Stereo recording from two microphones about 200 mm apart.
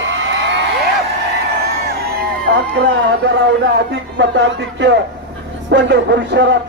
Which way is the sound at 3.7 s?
60° right (ahead or behind).